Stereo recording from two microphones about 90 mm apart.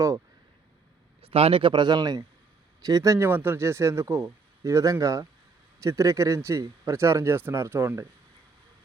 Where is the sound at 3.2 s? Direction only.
25° right (ahead or behind).